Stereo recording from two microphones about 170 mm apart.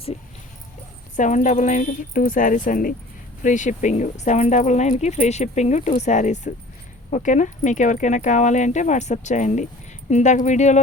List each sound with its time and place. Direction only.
1.1 s speech: 45° left (ahead or behind)